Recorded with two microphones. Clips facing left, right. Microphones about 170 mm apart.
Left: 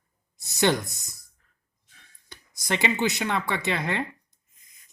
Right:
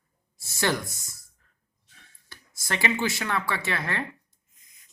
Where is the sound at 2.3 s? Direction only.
20° left (ahead or behind).